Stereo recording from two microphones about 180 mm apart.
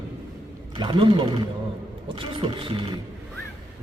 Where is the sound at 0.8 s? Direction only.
25° right (ahead or behind).